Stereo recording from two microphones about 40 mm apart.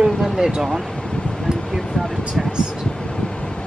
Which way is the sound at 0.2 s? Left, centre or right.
Centre.